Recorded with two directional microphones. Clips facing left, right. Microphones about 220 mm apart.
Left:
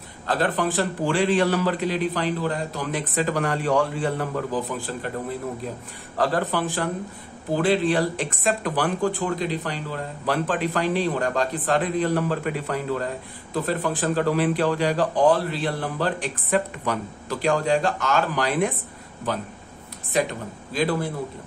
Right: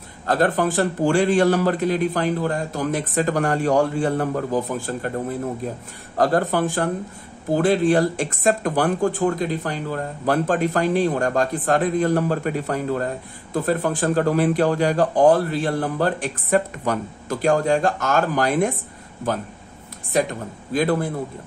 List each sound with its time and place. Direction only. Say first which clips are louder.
0.3 s speech: right 4 dB; 45° right (ahead or behind)
6.1 s speech: right 4 dB; 45° right (ahead or behind)
20.1 s speech: right 2 dB; 45° right (ahead or behind)